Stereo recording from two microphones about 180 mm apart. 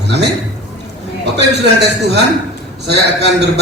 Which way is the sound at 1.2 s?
70° right (ahead or behind).